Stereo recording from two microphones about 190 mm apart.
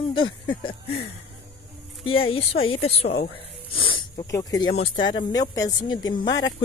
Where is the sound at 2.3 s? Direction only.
30° left (ahead or behind).